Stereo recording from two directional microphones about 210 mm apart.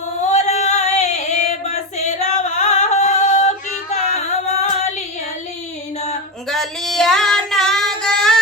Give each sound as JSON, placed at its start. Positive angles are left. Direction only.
{"t": 0.3, "sound": "female singing", "side_deg": 30}
{"t": 6.5, "sound": "female singing", "side_deg": 0}